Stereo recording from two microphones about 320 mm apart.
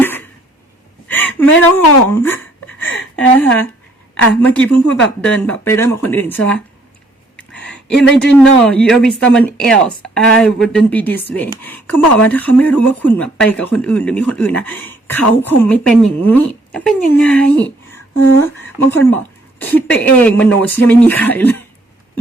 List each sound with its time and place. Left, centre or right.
0.0 s a sound: centre
1.7 s speech: centre
2.8 s a sound: centre
4.1 s speech: centre
7.6 s speech: centre
18.2 s speech: left
18.9 s a woman's voice: centre